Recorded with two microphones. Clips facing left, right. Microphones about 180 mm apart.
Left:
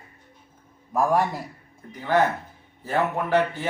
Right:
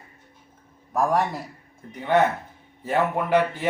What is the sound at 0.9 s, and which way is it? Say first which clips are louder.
Speech: left 1 dB; centre (ahead or behind).